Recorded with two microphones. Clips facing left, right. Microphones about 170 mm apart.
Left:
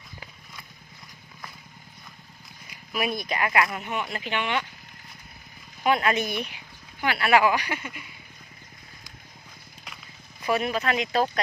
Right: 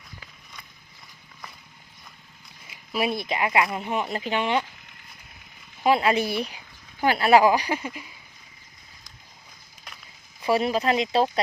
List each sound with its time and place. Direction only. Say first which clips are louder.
2.6 s speech: right 3 dB; 25° right (ahead or behind)
5.8 s speech: right 3 dB; 25° right (ahead or behind)
10.4 s speech: right 3 dB; 30° right (ahead or behind)